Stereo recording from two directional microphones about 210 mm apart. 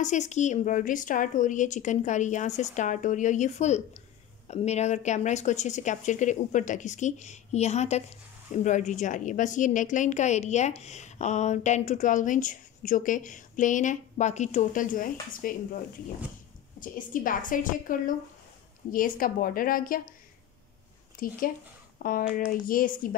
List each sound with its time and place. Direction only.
0.0 s a woman's voice: 35° left (ahead or behind)
16.8 s a woman's voice: 40° left (ahead or behind)
21.2 s speech: 45° left (ahead or behind)
21.9 s a sound: 45° left (ahead or behind)
22.7 s speech: 40° left (ahead or behind)